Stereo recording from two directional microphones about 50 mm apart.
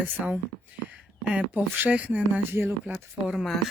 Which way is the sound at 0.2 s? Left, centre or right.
Right.